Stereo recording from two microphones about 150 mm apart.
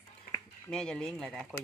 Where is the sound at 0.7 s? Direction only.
5° left (ahead or behind).